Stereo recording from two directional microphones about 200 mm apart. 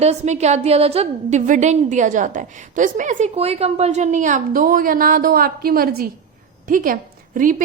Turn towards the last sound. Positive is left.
turn(degrees=-40)  # may be behind; listen again after turning